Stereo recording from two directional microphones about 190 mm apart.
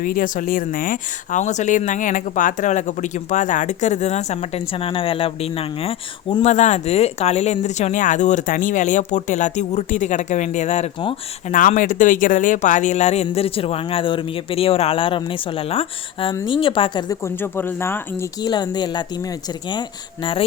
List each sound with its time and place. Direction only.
0.0 s speech: 45° left (ahead or behind); by 19.0 s 20° left (ahead or behind)